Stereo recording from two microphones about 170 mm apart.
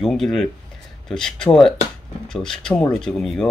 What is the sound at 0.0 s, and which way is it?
Speech, centre (ahead or behind).